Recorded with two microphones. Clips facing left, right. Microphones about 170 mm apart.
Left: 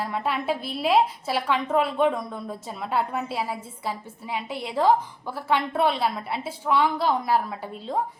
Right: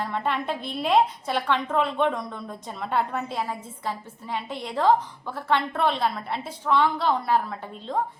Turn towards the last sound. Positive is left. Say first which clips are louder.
# left 1 dB
turn(degrees=10)  # may be behind; listen again after turning